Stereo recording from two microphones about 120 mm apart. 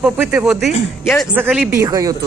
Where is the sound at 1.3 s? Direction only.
15° right (ahead or behind).